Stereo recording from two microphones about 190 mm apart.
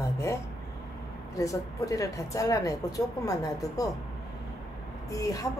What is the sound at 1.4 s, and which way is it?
A woman's voice, 15° left (ahead or behind).